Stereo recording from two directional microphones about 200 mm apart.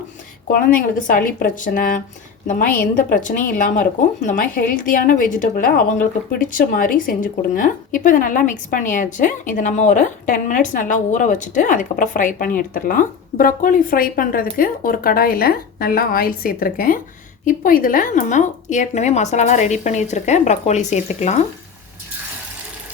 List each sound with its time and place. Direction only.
0.4 s a woman's voice: 45° left (ahead or behind)